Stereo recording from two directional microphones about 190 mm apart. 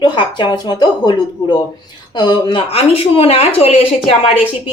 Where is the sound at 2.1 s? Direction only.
25° left (ahead or behind).